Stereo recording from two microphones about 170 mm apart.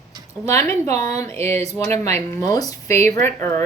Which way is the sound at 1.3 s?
40° right (ahead or behind).